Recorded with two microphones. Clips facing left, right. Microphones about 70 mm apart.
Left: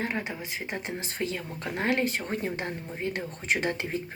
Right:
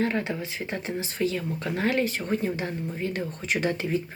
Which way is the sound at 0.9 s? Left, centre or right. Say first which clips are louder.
Right 7 dB; left.